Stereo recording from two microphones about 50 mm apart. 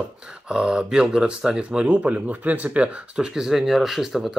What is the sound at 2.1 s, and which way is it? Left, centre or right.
Speech, right.